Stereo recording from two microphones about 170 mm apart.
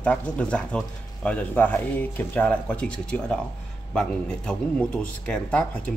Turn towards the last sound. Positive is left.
turn(degrees=10)  # may be behind; listen again after turning